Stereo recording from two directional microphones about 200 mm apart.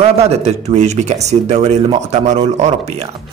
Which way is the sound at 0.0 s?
30° right (ahead or behind).